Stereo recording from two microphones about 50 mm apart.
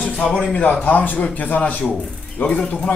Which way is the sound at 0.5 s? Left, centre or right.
Left.